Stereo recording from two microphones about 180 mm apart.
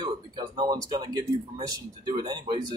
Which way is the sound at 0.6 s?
20° right (ahead or behind).